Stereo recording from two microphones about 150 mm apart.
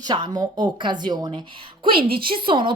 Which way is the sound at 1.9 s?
90° right.